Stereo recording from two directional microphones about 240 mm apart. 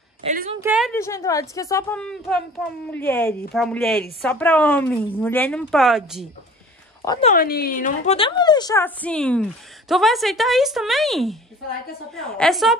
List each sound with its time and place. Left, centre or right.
0.2 s a woman's voice: right
0.6 s a woman's voice: centre
0.9 s a woman's voice: centre
7.1 s speech: left
7.3 s a woman's voice: left; by 12.7 s centre